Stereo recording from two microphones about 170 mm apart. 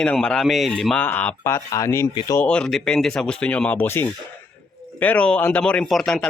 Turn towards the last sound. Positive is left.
turn(degrees=0)  # may be behind; listen again after turning